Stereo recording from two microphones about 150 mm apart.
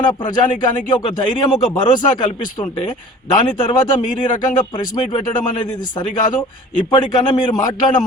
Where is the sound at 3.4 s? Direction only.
30° left (ahead or behind).